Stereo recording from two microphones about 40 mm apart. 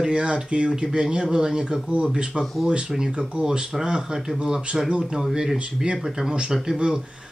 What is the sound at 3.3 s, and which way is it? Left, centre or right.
Speech, right.